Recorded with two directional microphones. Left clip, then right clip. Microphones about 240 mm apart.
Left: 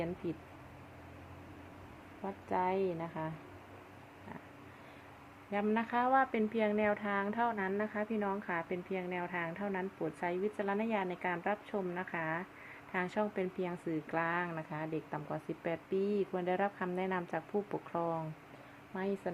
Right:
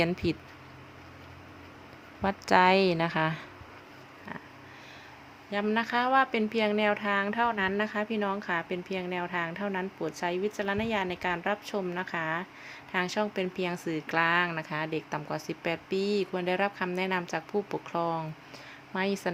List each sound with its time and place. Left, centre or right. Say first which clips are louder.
0.2 s a woman's voice: right 10 dB; right
2.2 s a woman's voice: right 12 dB; right
5.5 s a woman's voice: right 6 dB; centre